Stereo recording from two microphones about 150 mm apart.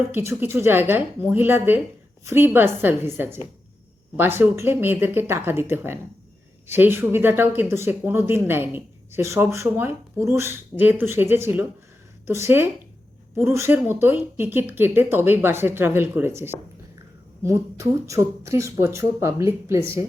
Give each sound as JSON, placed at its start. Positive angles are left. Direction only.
{"t": 0.1, "sound": "speech", "side_deg": -15}